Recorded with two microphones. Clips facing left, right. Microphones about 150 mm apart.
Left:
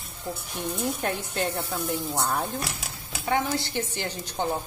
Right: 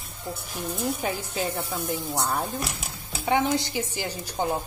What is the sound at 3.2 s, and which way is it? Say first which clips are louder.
A woman's voice: right 3 dB; 20° right (ahead or behind).